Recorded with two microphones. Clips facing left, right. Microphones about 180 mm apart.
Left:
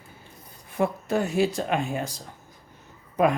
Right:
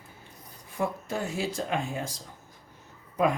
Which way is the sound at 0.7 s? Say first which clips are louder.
Left 6 dB; 65° left (ahead or behind).